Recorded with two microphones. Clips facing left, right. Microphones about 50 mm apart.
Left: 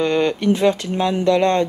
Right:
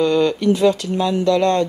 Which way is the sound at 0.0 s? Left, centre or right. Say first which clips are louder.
Right 2 dB; left.